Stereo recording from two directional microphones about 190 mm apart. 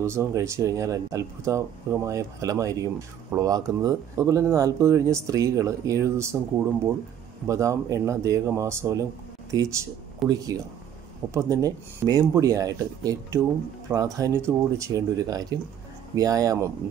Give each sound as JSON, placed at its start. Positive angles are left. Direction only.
{"t": 0.0, "sound": "speech", "side_deg": -15}
{"t": 7.4, "sound": "speech", "side_deg": -15}
{"t": 10.2, "sound": "speech", "side_deg": 0}
{"t": 11.3, "sound": "speech", "side_deg": -20}